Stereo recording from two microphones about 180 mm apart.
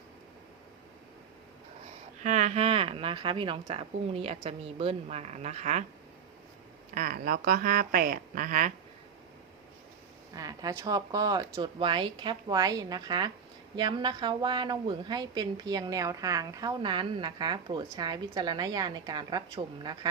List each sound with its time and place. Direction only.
2.2 s a woman's voice: 40° right (ahead or behind)
6.9 s speech: 50° right (ahead or behind)
10.3 s a woman's voice: 20° right (ahead or behind)